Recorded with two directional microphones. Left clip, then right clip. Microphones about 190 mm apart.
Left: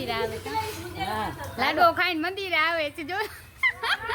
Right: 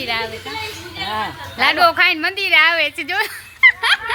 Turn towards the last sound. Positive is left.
turn(degrees=-5)  # may be behind; listen again after turning